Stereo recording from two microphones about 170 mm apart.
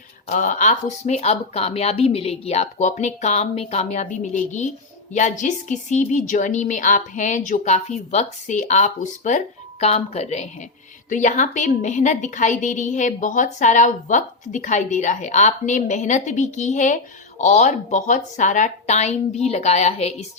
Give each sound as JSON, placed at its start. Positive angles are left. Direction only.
{"t": 0.3, "sound": "a woman's voice", "side_deg": 50}